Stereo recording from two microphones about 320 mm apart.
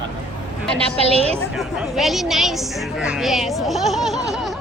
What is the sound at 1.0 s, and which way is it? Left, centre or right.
Speech, centre.